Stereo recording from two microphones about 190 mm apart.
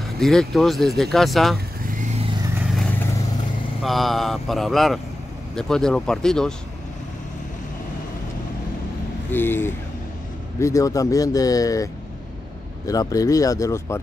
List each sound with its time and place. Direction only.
0.2 s speech: centre (ahead or behind)
3.8 s speech: centre (ahead or behind)
9.3 s speech: 10° left (ahead or behind)